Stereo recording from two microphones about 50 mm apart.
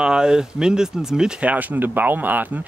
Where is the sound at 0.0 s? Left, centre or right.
Centre.